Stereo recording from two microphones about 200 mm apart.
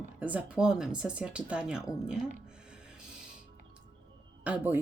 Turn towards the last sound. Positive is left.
turn(degrees=-10)  # may be behind; listen again after turning